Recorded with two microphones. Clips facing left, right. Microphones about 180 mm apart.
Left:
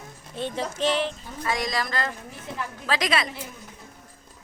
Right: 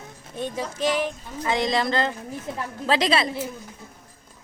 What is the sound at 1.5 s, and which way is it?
Speech, 25° right (ahead or behind).